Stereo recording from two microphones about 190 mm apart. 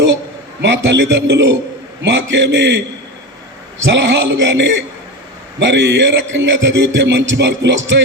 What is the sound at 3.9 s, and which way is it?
A man's voice, 65° right (ahead or behind).